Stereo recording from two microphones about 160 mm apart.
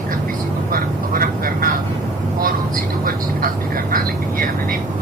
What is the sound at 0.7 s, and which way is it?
Vehicle, 65° right (ahead or behind).